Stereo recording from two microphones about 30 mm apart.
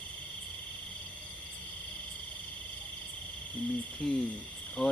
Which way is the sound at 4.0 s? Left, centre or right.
Left.